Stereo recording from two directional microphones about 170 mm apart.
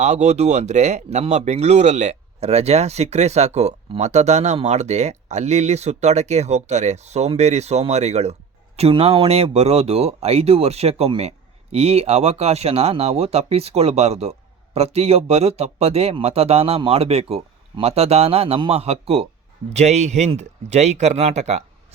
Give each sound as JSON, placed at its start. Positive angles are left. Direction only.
{"t": 0.0, "sound": "speech", "side_deg": -40}